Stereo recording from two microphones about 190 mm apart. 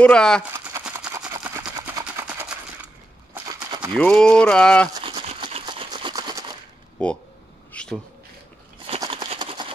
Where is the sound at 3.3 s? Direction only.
20° right (ahead or behind).